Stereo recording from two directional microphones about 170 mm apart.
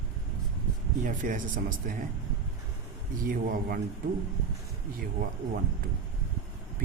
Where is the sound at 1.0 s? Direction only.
50° right (ahead or behind).